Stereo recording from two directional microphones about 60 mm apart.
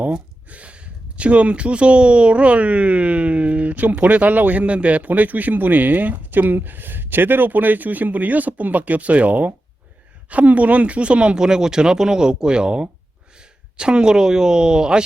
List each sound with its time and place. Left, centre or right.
0.5 s speech: right